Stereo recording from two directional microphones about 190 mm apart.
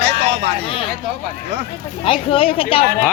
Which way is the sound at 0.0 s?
60° right (ahead or behind).